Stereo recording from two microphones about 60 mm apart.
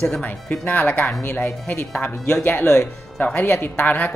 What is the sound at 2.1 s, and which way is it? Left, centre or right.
Speech, left.